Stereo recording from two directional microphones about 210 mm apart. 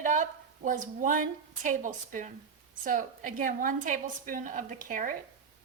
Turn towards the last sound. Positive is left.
turn(degrees=-40)  # may be behind; listen again after turning